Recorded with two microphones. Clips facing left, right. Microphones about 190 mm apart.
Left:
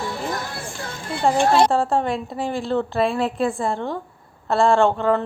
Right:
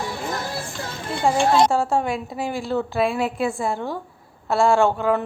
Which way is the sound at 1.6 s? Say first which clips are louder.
Left 1 dB; centre (ahead or behind).